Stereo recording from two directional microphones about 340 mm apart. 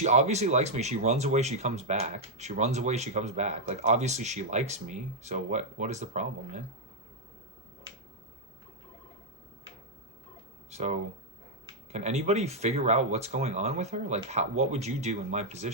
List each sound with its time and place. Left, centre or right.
0.0 s speech: centre
10.7 s speech: centre